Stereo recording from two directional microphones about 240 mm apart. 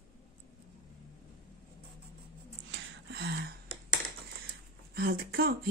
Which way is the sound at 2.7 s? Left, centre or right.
Right.